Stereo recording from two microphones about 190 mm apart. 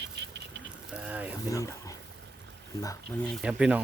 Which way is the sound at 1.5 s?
15° left (ahead or behind).